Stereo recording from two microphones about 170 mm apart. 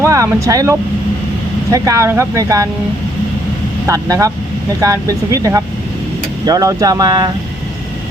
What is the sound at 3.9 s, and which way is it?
Speech, 20° right (ahead or behind).